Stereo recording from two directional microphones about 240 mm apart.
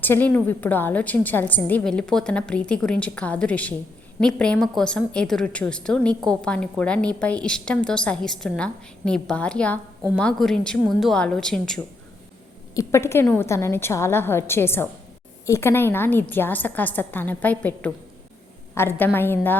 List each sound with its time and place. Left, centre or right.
0.0 s a woman's voice: centre